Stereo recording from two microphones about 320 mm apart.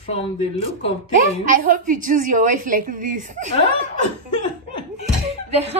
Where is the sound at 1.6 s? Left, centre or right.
Right.